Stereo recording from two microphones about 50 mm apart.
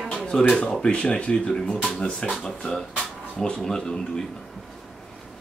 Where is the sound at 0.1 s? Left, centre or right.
Centre.